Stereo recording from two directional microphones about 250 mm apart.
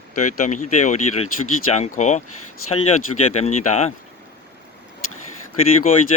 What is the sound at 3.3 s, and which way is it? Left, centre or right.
Speech, left.